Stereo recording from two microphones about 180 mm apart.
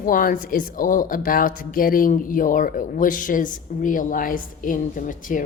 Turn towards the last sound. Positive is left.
turn(degrees=45)  # may be behind; listen again after turning